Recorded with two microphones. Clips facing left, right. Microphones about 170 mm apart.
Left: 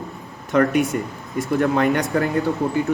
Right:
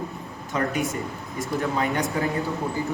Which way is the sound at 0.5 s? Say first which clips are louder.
Left 8 dB; 65° left (ahead or behind).